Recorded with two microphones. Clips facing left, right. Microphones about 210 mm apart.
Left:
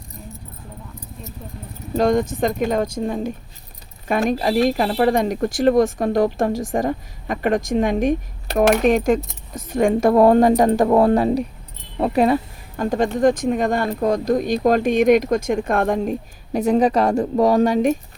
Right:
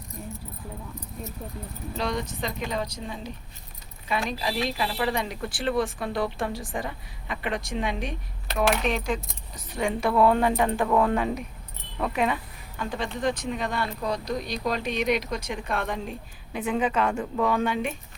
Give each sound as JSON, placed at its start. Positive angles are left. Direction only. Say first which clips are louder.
{"t": 2.0, "sound": "speech", "louder": "left 12 dB", "side_deg": 45}